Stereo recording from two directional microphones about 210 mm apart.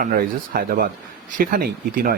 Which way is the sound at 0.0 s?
45° right (ahead or behind).